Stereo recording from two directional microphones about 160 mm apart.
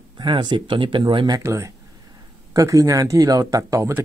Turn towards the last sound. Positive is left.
turn(degrees=-20)  # may be behind; listen again after turning